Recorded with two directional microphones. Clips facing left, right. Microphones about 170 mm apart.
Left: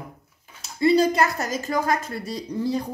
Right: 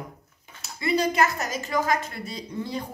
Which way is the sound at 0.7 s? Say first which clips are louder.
Left 6 dB; 35° left (ahead or behind).